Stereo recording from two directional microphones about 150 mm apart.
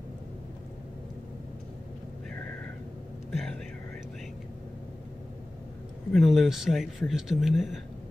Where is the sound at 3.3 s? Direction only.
5° left (ahead or behind).